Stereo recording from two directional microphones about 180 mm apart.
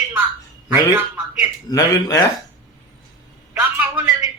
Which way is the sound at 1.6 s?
20° left (ahead or behind).